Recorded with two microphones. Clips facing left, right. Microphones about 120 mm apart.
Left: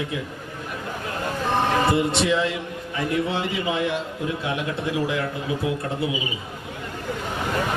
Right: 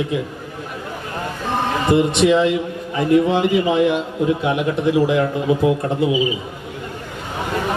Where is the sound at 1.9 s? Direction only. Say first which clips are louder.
Right 6 dB; 20° right (ahead or behind).